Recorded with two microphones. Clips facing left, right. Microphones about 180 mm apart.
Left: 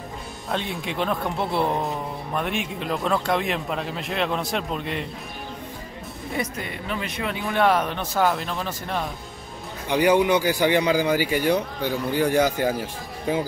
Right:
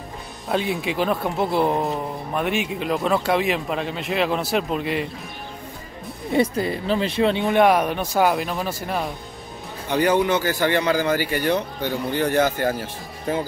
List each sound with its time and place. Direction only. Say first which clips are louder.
0.5 s speech: right 5 dB; 5° right (ahead or behind)
6.3 s speech: right 10 dB; 30° right (ahead or behind); by 9.0 s 10° right (ahead or behind)
9.8 s speech: left 1 dB; 15° left (ahead or behind)